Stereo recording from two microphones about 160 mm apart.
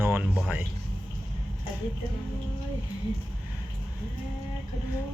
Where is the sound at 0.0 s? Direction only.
10° right (ahead or behind).